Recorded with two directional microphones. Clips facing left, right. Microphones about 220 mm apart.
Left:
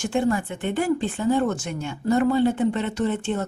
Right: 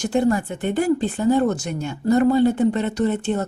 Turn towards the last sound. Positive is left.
turn(degrees=-40)  # may be behind; listen again after turning